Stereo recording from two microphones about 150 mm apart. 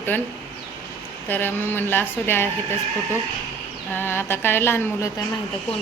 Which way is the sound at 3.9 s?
15° left (ahead or behind).